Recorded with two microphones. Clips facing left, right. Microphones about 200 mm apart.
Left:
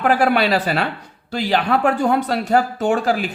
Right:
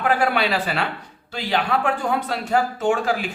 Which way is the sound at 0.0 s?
40° left (ahead or behind).